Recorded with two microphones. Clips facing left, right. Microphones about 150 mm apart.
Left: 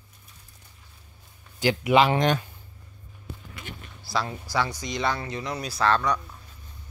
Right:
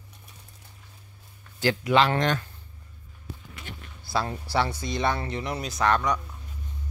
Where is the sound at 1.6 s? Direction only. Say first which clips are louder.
Left 2 dB; 15° left (ahead or behind).